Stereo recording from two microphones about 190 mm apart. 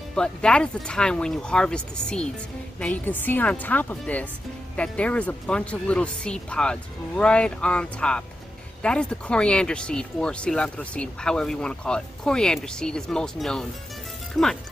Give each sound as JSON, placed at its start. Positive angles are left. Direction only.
{"t": 0.1, "sound": "speech", "side_deg": 5}